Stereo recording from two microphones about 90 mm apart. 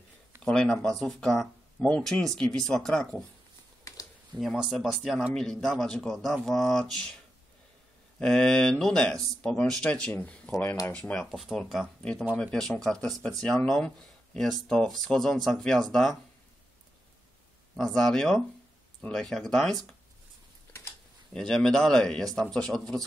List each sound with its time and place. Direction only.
0.5 s speech: 5° left (ahead or behind)
3.8 s a sound: 40° left (ahead or behind)
4.4 s speech: centre (ahead or behind)
8.2 s speech: 5° left (ahead or behind)
11.2 s speech: centre (ahead or behind)
12.0 s speech: 10° left (ahead or behind)
17.7 s speech: 5° left (ahead or behind)
21.3 s speech: 5° left (ahead or behind)